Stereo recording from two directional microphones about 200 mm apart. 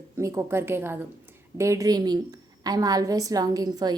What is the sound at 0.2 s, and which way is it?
A woman's voice, 15° right (ahead or behind).